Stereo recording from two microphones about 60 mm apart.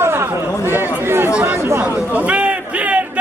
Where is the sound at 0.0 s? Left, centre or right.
Right.